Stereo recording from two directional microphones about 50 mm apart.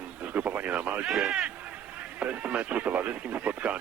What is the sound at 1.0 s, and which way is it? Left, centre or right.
Speech, centre.